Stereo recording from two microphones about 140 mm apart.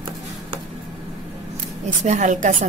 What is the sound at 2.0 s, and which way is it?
Speech, 60° right (ahead or behind).